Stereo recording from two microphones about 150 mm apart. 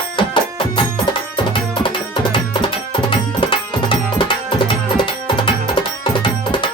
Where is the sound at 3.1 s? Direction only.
35° left (ahead or behind).